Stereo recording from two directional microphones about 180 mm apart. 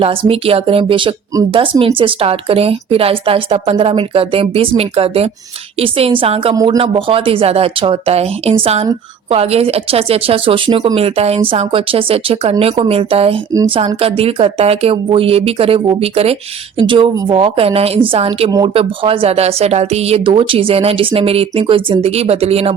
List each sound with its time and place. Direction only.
0.0 s speech: 30° right (ahead or behind)